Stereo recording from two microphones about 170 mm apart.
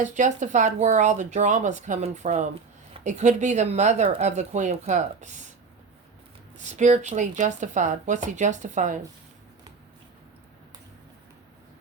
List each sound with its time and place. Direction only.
0.0 s speech: 45° right (ahead or behind)
6.6 s speech: 45° right (ahead or behind)